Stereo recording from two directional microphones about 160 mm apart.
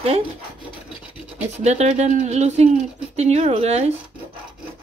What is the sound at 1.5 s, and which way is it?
Speech, 45° right (ahead or behind).